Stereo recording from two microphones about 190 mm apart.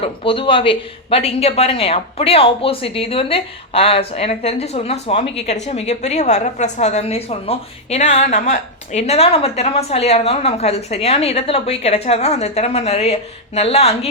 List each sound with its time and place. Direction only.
0.0 s speech: 25° left (ahead or behind)